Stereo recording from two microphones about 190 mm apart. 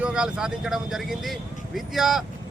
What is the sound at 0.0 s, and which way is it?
Speech, 5° right (ahead or behind).